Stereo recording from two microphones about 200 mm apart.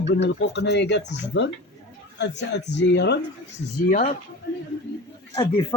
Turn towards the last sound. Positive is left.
turn(degrees=20)  # may be behind; listen again after turning